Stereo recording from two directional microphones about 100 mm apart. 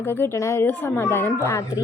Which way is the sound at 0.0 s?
20° left (ahead or behind).